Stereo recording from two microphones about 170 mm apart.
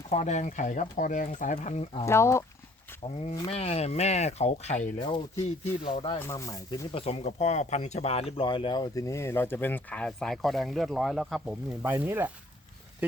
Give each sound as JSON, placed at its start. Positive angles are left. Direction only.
{"t": 0.1, "sound": "speech", "side_deg": 45}
{"t": 2.0, "sound": "speech", "side_deg": 15}
{"t": 3.5, "sound": "speech", "side_deg": 35}
{"t": 4.9, "sound": "speech", "side_deg": 30}
{"t": 6.1, "sound": "speech", "side_deg": 15}
{"t": 6.9, "sound": "speech", "side_deg": 35}
{"t": 11.8, "sound": "speech", "side_deg": -15}